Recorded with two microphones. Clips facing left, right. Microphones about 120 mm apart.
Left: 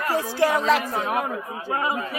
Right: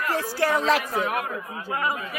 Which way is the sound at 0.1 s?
15° left (ahead or behind).